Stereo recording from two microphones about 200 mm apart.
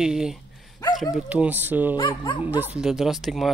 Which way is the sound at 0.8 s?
20° left (ahead or behind).